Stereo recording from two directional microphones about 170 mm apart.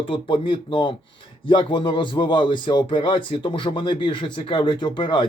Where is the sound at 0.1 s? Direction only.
30° left (ahead or behind).